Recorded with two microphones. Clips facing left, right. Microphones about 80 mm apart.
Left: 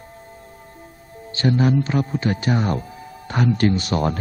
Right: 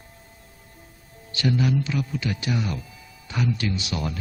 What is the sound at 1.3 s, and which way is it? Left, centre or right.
Speech, left.